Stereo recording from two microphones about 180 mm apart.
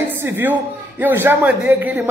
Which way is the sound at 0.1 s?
10° right (ahead or behind).